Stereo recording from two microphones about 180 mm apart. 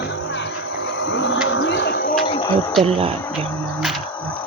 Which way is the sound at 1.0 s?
90° left.